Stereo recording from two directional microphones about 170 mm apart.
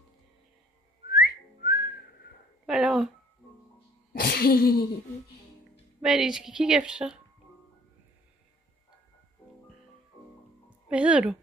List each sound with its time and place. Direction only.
1.1 s whistling: 60° left (ahead or behind)
2.6 s speech: centre (ahead or behind)
4.1 s sneeze: 65° left (ahead or behind)
5.9 s a woman's voice: 5° right (ahead or behind)
10.9 s speech: 5° right (ahead or behind)